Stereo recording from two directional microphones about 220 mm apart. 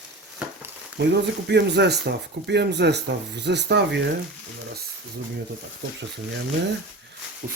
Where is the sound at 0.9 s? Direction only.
50° right (ahead or behind).